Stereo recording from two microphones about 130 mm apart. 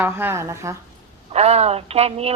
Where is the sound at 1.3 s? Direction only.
55° right (ahead or behind).